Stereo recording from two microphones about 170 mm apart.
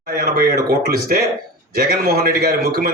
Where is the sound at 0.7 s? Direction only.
65° right (ahead or behind).